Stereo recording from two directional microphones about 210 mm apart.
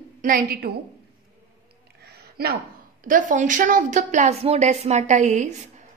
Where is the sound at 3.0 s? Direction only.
40° right (ahead or behind).